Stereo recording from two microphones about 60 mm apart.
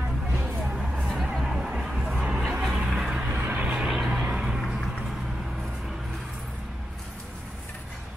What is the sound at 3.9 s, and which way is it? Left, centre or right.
Vehicle, centre.